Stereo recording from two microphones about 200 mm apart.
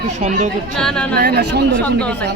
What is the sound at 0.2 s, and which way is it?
Speech, 35° right (ahead or behind).